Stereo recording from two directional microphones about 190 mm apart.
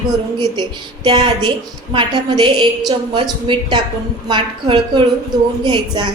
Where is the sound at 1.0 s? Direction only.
25° right (ahead or behind).